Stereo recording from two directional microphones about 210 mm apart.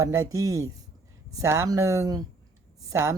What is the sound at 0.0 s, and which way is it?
Speech, 15° right (ahead or behind).